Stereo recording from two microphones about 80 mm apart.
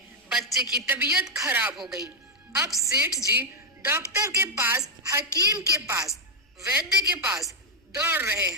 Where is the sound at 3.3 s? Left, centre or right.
Right.